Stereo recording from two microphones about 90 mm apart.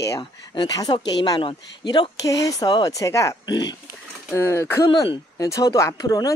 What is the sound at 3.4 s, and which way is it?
Speech, 55° left (ahead or behind).